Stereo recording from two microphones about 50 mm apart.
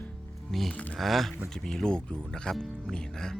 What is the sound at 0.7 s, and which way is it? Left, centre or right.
Speech, left.